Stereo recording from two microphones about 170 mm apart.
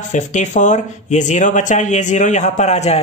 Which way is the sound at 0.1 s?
45° left (ahead or behind).